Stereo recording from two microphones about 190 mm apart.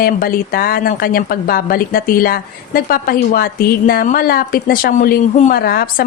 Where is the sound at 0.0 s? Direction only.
50° left (ahead or behind).